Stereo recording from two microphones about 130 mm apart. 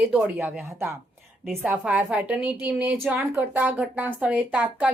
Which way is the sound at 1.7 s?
5° right (ahead or behind).